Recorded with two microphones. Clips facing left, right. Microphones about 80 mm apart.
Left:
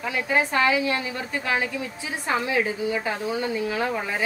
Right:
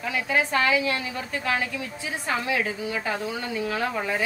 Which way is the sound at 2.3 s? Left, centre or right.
Left.